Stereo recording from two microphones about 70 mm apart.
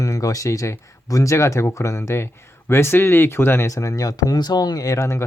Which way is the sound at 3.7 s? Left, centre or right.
Left.